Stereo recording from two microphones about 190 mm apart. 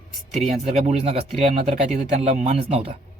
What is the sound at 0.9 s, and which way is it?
Speech, 35° right (ahead or behind).